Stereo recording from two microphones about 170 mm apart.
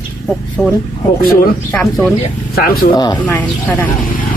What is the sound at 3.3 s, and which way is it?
Speech, 10° left (ahead or behind).